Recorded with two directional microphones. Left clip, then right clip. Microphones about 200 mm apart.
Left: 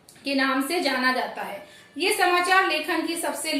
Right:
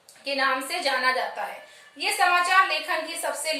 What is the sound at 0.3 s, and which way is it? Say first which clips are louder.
A woman's voice: left 1 dB; centre (ahead or behind).